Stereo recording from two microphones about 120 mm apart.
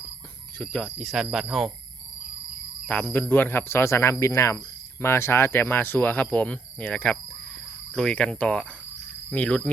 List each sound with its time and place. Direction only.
0.6 s speech: 5° left (ahead or behind)
2.8 s speech: 10° left (ahead or behind)